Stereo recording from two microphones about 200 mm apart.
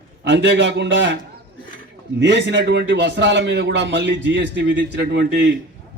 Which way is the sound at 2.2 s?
60° right (ahead or behind).